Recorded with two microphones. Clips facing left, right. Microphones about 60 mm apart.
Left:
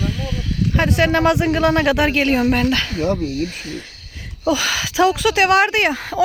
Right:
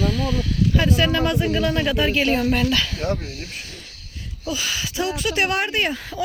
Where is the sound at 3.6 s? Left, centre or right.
Left.